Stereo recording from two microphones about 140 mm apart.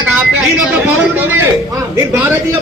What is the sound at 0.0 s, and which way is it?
A man's voice, 10° right (ahead or behind).